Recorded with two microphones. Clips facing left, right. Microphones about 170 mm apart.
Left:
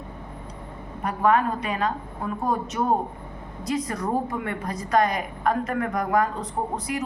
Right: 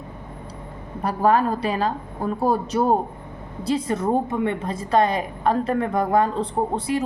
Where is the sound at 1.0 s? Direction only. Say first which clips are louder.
Right 2 dB; 35° right (ahead or behind).